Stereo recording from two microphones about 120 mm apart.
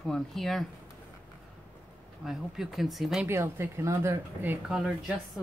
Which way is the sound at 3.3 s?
20° right (ahead or behind).